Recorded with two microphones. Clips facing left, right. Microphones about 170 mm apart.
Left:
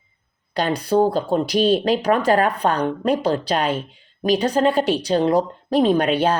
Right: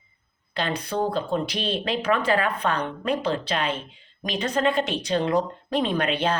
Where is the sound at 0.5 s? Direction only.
40° left (ahead or behind).